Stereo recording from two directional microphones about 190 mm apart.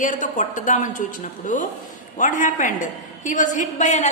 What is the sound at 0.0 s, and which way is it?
A woman's voice, 40° left (ahead or behind).